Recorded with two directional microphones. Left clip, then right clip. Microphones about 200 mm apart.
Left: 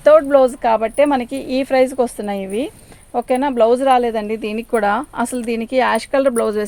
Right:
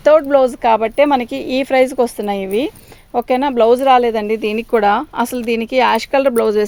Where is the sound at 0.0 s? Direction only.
40° right (ahead or behind).